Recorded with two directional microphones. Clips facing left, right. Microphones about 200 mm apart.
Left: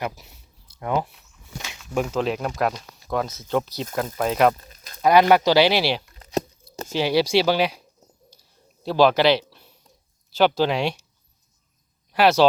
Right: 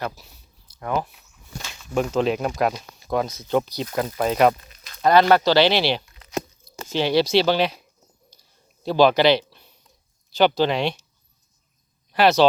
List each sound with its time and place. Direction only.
0.0 s a sound: 20° left (ahead or behind)
1.7 s speech: 5° left (ahead or behind)
4.5 s a sound: 40° left (ahead or behind)
5.0 s speech: 15° left (ahead or behind)
6.1 s crunch: 40° left (ahead or behind)
6.8 s speech: 5° left (ahead or behind)
8.8 s speech: 5° left (ahead or behind)
12.1 s speech: 10° left (ahead or behind)